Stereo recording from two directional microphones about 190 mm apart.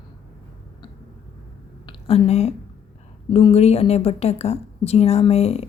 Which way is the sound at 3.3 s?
30° left (ahead or behind).